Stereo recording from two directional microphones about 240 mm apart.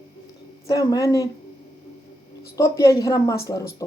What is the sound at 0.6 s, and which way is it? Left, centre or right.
Speech, centre.